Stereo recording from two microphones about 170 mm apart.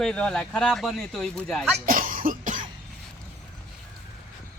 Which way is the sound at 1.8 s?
55° right (ahead or behind).